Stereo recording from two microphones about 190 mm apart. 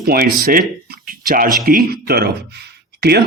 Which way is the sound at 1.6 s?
50° right (ahead or behind).